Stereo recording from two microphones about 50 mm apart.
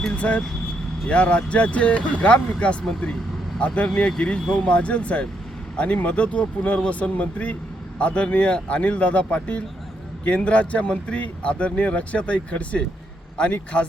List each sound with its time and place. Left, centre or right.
0.2 s speech: left